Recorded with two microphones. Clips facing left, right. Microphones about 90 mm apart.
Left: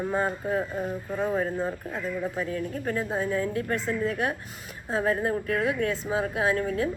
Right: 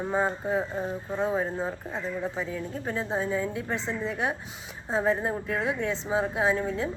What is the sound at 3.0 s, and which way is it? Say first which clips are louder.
Speech: even; 5° left (ahead or behind).